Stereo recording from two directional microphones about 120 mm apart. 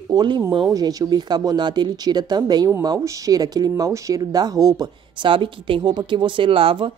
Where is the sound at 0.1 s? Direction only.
35° right (ahead or behind).